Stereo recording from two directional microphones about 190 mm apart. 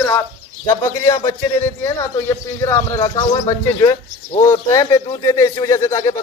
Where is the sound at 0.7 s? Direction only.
20° left (ahead or behind).